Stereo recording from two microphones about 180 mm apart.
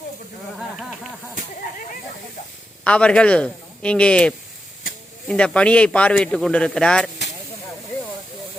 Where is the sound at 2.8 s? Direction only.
5° left (ahead or behind).